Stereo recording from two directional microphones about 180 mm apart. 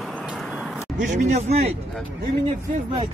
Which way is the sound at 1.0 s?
40° right (ahead or behind).